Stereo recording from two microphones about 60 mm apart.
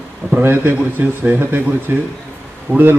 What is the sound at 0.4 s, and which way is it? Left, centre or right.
Speech, right.